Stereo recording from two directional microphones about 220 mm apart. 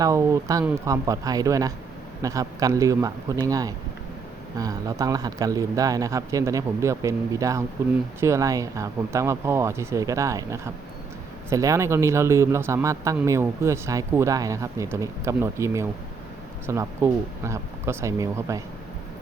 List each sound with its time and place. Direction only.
0.0 s a man's voice: 15° right (ahead or behind)